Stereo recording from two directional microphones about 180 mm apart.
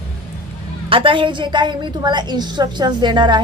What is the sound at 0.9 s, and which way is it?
A woman's voice, 30° right (ahead or behind).